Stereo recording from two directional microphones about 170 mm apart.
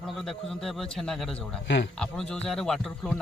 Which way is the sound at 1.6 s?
90° left.